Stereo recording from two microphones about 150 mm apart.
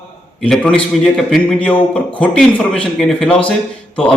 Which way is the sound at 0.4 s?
5° left (ahead or behind).